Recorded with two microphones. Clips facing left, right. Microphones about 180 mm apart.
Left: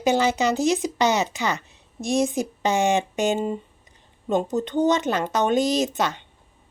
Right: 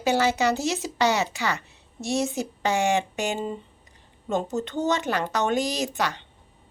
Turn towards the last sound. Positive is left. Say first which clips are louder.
# left 5 dB
turn(degrees=20)  # may be behind; listen again after turning